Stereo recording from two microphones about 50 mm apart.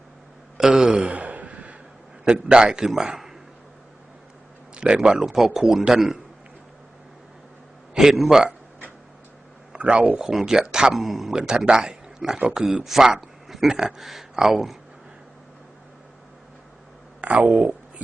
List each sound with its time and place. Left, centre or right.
0.5 s a sound: centre; by 1.7 s right
2.2 s a man's voice: centre
4.7 s speech: centre
7.9 s speech: centre
9.7 s speech: right
10.2 s a man's voice: centre
11.3 s speech: centre
13.5 s a sound: centre
13.7 s speech: centre
14.0 s speech: centre
17.2 s speech: right